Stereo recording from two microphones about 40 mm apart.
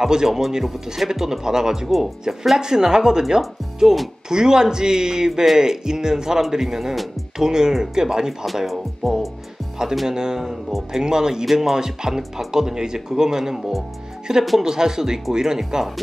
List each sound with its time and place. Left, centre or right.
0.0 s speech: centre
8.6 s speech: centre
10.0 s speech: centre